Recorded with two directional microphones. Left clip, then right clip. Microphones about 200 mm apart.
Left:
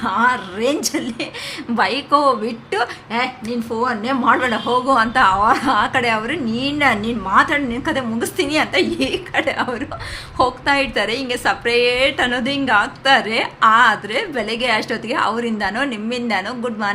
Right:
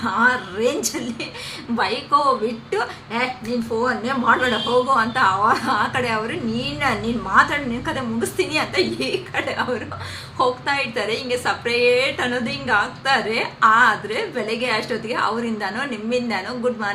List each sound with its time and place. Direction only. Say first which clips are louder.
0.0 s a woman's voice: left 2 dB; 45° left (ahead or behind)